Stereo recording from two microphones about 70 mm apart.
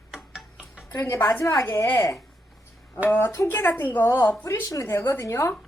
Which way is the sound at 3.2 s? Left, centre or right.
Left.